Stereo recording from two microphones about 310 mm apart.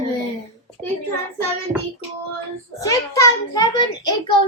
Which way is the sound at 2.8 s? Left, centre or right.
Centre.